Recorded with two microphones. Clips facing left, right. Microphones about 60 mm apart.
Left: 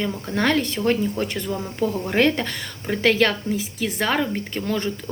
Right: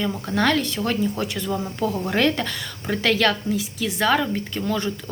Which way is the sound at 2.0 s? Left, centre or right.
Left.